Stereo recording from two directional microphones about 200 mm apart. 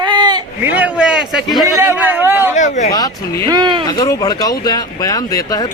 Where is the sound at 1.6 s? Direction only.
15° right (ahead or behind).